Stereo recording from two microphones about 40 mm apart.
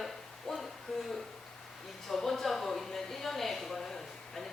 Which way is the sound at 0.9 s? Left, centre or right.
Centre.